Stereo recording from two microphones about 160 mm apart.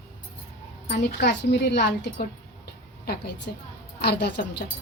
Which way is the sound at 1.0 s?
90° left.